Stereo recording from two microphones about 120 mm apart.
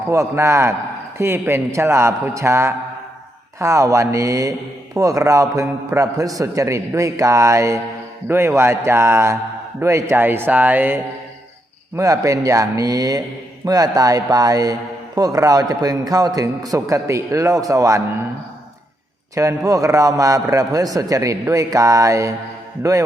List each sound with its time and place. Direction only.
0.1 s a man's voice: 25° right (ahead or behind)
11.9 s a man's voice: 30° right (ahead or behind)
19.3 s a man's voice: 25° right (ahead or behind)